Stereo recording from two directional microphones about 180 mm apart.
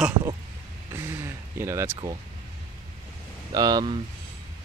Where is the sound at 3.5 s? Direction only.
20° right (ahead or behind).